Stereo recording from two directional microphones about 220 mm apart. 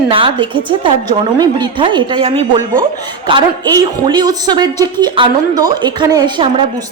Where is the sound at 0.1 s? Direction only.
25° right (ahead or behind).